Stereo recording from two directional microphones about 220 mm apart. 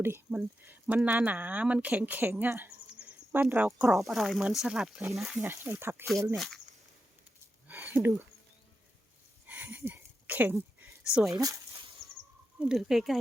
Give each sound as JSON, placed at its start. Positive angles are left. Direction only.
{"t": 0.0, "sound": "speech", "side_deg": -10}
{"t": 5.4, "sound": "speech", "side_deg": -10}
{"t": 6.3, "sound": "speech", "side_deg": 0}
{"t": 8.0, "sound": "speech", "side_deg": -15}
{"t": 9.5, "sound": "a sound", "side_deg": -5}
{"t": 11.3, "sound": "dog", "side_deg": -15}
{"t": 12.5, "sound": "speech", "side_deg": 0}